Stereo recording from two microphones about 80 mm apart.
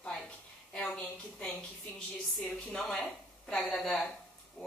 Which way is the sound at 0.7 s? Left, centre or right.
Centre.